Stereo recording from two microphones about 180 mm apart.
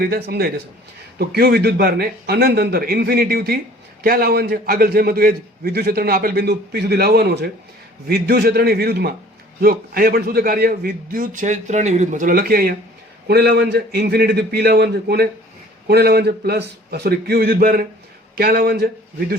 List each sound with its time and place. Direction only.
0.0 s a man's voice: 60° right (ahead or behind)